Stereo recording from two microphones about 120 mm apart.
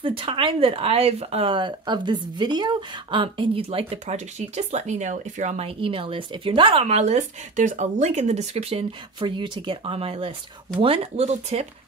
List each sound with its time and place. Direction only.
0.0 s speech: 45° right (ahead or behind)
3.9 s speech: 70° right (ahead or behind)
5.7 s speech: 50° right (ahead or behind)
9.2 s speech: 40° right (ahead or behind); by 11.6 s 60° right (ahead or behind)